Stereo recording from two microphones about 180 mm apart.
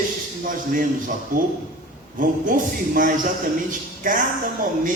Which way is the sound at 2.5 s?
50° right (ahead or behind).